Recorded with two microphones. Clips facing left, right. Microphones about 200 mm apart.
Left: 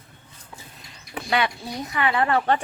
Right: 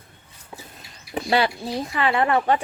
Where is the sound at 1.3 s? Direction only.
30° right (ahead or behind).